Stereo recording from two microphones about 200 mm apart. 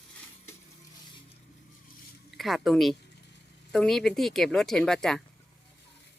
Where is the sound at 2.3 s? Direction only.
Centre (ahead or behind).